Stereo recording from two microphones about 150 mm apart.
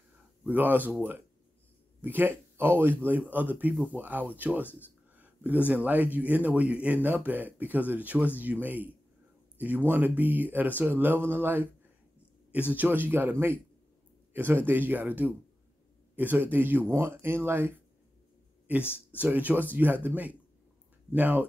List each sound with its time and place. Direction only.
0.4 s speech: 10° right (ahead or behind)
2.0 s speech: 10° right (ahead or behind)
5.1 s a sound: 10° right (ahead or behind)
5.7 s speech: 10° right (ahead or behind)
19.1 s speech: 10° right (ahead or behind)